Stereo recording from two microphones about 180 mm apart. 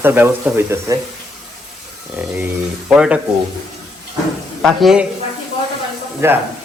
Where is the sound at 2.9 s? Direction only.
5° right (ahead or behind).